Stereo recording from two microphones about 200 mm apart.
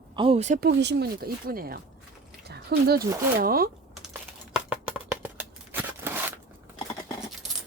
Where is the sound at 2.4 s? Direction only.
50° right (ahead or behind).